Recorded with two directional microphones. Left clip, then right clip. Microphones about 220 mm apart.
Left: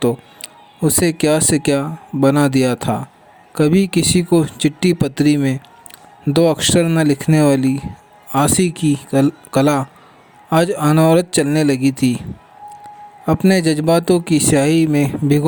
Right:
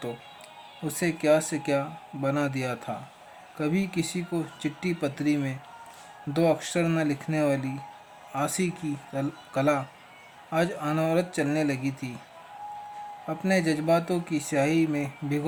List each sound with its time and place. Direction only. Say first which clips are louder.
0.0 s speech: left 17 dB; 40° left (ahead or behind)
13.2 s speech: left 11 dB; 40° left (ahead or behind)